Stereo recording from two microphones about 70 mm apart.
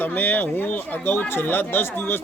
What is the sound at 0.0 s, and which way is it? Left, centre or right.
A man's voice, left.